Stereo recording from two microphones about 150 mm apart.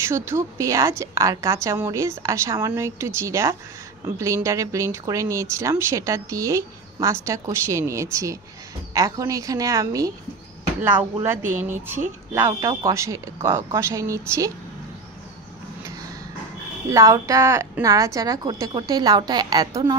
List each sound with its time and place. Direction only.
0.0 s speech: 15° right (ahead or behind)
11.2 s speech: 15° right (ahead or behind)
16.9 s speech: 20° right (ahead or behind)